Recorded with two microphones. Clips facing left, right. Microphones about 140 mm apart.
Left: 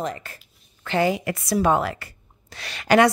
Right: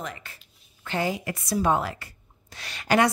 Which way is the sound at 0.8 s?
85° left.